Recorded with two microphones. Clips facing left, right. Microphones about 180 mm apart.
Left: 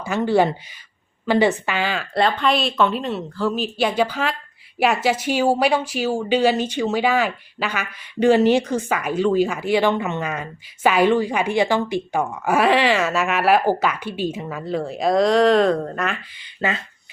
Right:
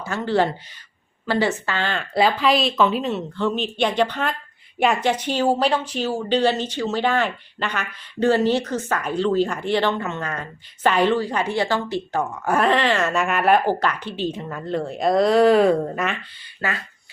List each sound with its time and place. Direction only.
0.0 s speech: 15° left (ahead or behind); by 16.1 s 5° right (ahead or behind)
16.4 s speech: 20° left (ahead or behind)